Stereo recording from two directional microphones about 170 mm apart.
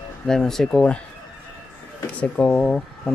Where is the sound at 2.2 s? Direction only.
5° left (ahead or behind).